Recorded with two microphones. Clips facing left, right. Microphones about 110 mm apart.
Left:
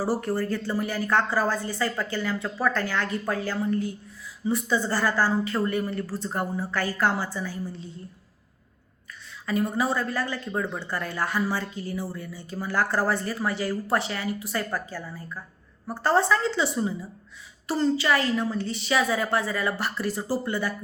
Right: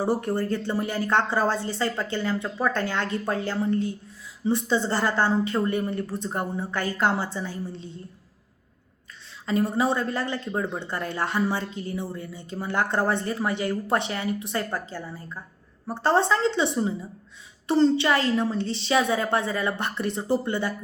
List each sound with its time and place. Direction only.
0.0 s speech: 20° right (ahead or behind)
9.5 s speech: 25° right (ahead or behind)